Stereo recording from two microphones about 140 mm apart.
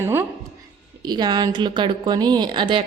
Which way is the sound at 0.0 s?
15° right (ahead or behind).